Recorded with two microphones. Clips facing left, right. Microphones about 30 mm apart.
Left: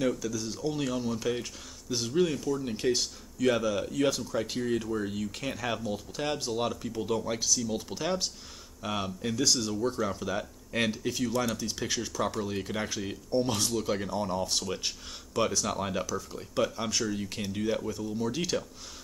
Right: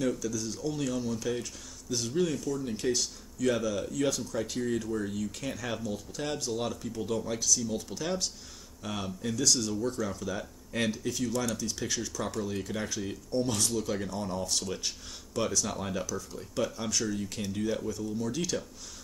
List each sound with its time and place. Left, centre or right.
0.0 s speech: centre